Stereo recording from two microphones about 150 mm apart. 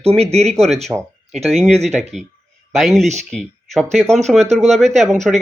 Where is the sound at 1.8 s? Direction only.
45° right (ahead or behind).